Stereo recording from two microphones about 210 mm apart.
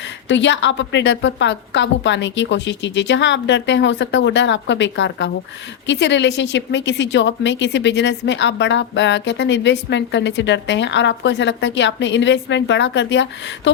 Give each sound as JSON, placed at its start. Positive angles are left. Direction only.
{"t": 0.3, "sound": "speech", "side_deg": 60}